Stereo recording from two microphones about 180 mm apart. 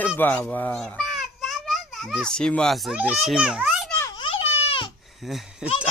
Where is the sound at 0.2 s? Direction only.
10° left (ahead or behind).